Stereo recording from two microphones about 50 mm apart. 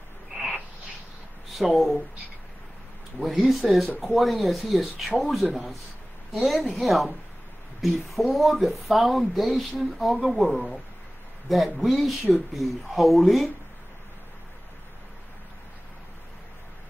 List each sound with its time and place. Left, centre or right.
1.6 s speech: centre
3.2 s speech: centre